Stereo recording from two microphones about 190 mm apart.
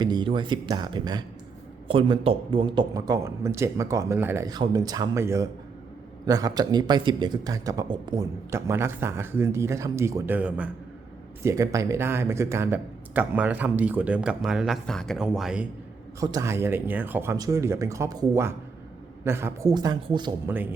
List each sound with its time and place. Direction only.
0.0 s speech: 25° right (ahead or behind); by 15.6 s 5° right (ahead or behind)
16.2 s speech: 20° right (ahead or behind)
20.5 s speech: 10° right (ahead or behind)